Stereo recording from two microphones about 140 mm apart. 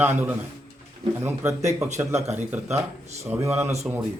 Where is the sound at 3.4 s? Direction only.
20° right (ahead or behind).